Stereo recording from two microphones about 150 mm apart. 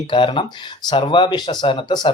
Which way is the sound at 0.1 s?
35° left (ahead or behind).